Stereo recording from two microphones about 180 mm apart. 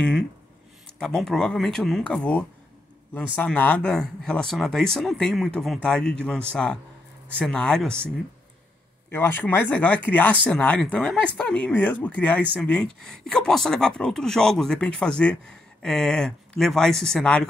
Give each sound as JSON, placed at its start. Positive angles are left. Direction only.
{"t": 0.9, "sound": "speech", "side_deg": 0}
{"t": 9.1, "sound": "speech", "side_deg": 10}